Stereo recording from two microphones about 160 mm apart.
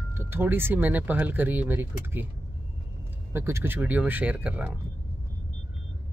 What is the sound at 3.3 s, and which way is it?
Speech, 15° right (ahead or behind).